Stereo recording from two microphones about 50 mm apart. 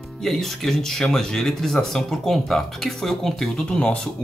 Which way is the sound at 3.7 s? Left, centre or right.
Centre.